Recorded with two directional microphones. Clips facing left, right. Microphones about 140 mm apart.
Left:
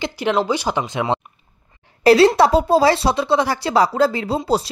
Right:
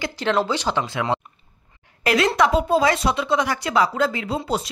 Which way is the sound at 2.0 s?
30° left (ahead or behind).